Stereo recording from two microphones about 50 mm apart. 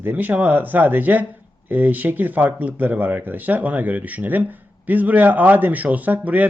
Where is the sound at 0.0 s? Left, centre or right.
Right.